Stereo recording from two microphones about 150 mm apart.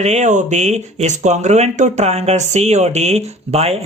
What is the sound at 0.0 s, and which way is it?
Speech, 50° right (ahead or behind).